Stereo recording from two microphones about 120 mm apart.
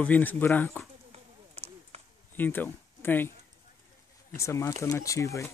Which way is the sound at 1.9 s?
65° right (ahead or behind).